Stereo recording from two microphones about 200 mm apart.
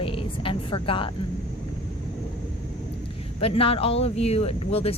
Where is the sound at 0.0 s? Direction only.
25° left (ahead or behind).